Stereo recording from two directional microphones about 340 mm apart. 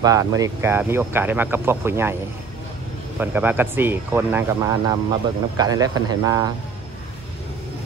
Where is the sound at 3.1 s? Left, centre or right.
Centre.